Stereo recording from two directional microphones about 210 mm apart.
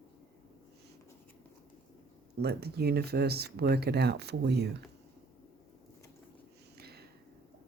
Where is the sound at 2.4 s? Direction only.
50° right (ahead or behind).